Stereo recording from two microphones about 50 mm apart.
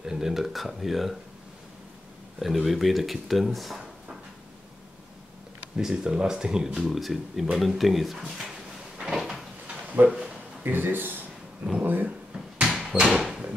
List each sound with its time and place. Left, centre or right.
0.0 s speech: centre
2.3 s speech: centre
5.8 s speech: centre
6.9 s speech: centre
7.5 s drawer open or close: centre
10.0 s a sound: centre
10.6 s speech: right
12.5 s bouncing: centre
13.0 s a sound: centre